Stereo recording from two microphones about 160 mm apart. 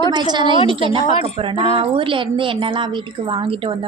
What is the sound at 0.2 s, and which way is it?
A woman's voice, 30° right (ahead or behind).